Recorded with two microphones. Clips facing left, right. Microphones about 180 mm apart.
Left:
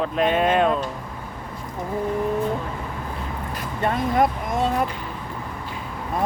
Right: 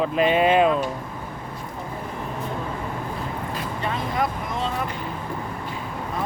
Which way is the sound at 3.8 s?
50° left (ahead or behind).